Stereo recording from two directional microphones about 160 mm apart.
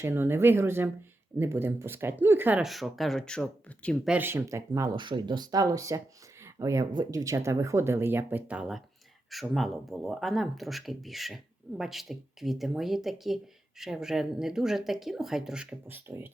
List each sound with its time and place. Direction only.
0.0 s speech: 15° right (ahead or behind); by 4.1 s 5° left (ahead or behind)
4.1 s speech: 15° right (ahead or behind)